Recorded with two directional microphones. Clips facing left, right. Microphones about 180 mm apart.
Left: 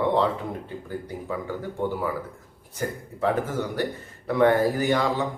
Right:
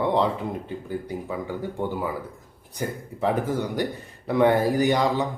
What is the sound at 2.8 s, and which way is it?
Speech, 15° right (ahead or behind).